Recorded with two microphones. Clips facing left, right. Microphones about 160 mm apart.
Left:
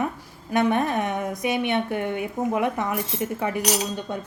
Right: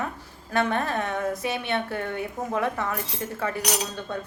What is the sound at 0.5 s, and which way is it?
Speech, 15° left (ahead or behind).